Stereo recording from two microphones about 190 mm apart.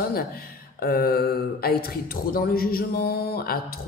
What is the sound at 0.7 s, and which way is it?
A man's voice, 50° left (ahead or behind).